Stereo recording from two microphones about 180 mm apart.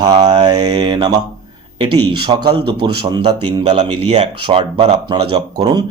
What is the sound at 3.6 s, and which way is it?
Speech, 40° right (ahead or behind).